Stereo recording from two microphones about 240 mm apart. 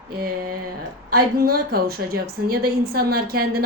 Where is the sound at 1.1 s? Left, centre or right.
Right.